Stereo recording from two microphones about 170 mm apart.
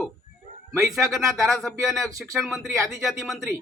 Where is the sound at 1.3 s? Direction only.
Centre (ahead or behind).